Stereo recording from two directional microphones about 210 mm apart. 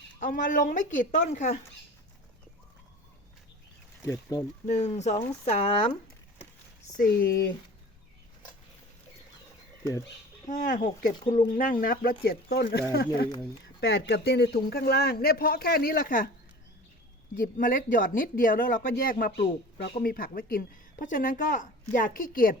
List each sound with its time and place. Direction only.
0.2 s speech: 40° left (ahead or behind)
4.0 s speech: 15° left (ahead or behind)
4.6 s speech: 35° left (ahead or behind)
6.9 s speech: 40° left (ahead or behind)
10.5 s speech: 40° left (ahead or behind)
17.3 s speech: 40° left (ahead or behind)